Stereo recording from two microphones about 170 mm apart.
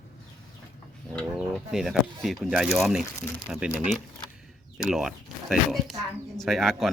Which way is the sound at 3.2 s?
15° left (ahead or behind).